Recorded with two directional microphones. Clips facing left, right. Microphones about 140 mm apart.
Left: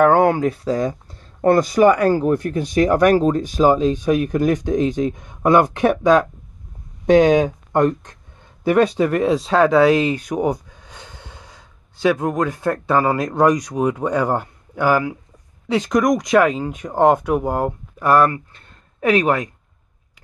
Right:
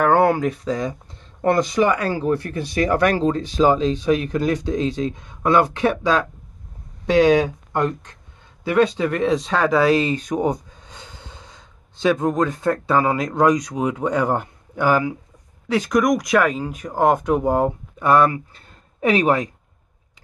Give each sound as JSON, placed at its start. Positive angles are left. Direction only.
{"t": 0.0, "sound": "a sound", "side_deg": 20}
{"t": 0.4, "sound": "speech", "side_deg": 35}
{"t": 1.8, "sound": "speech", "side_deg": 50}
{"t": 2.5, "sound": "speech", "side_deg": 15}
{"t": 8.6, "sound": "speech", "side_deg": 15}
{"t": 9.5, "sound": "speech", "side_deg": 25}
{"t": 14.2, "sound": "a man's voice", "side_deg": -15}
{"t": 15.7, "sound": "speech", "side_deg": 25}
{"t": 17.2, "sound": "speech", "side_deg": 5}